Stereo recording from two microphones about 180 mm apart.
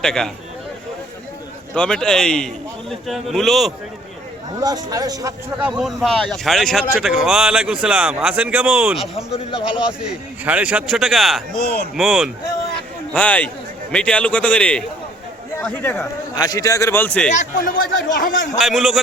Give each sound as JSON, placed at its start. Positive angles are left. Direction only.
{"t": 0.0, "sound": "speech", "side_deg": 5}
{"t": 1.7, "sound": "speech", "side_deg": 5}
{"t": 4.6, "sound": "speech", "side_deg": -20}
{"t": 5.5, "sound": "speech", "side_deg": -5}
{"t": 9.1, "sound": "a man's voice", "side_deg": 30}
{"t": 9.7, "sound": "speech", "side_deg": -5}
{"t": 11.5, "sound": "speech", "side_deg": 60}
{"t": 11.9, "sound": "speech", "side_deg": 0}
{"t": 13.1, "sound": "a man's voice", "side_deg": 10}
{"t": 16.3, "sound": "a man's voice", "side_deg": 20}
{"t": 17.2, "sound": "speech", "side_deg": 45}
{"t": 18.6, "sound": "speech", "side_deg": 0}